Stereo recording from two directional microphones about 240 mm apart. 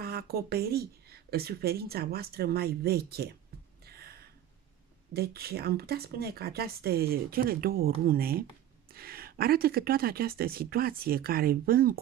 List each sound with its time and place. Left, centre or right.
0.0 s speech: right
3.8 s a sound: right
5.1 s speech: right